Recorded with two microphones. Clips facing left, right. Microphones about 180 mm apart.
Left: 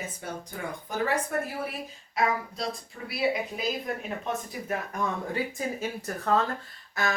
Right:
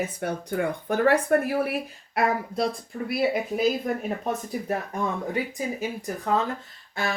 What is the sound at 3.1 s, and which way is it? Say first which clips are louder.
Speech: right 3 dB; 50° right (ahead or behind).